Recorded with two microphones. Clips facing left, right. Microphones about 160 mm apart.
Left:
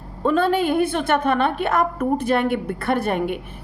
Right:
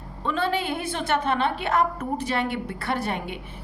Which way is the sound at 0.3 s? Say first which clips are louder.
Left 7 dB; 50° left (ahead or behind).